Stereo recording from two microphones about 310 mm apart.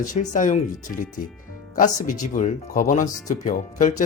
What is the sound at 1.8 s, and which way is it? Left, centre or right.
Speech, left.